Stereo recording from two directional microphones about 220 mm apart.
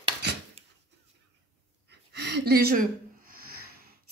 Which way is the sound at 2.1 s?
50° right (ahead or behind).